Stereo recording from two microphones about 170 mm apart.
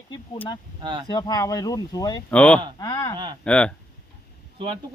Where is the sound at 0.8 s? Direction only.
30° right (ahead or behind).